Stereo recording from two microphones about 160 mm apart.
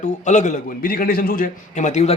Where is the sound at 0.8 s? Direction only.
65° left (ahead or behind); by 2.1 s 45° left (ahead or behind).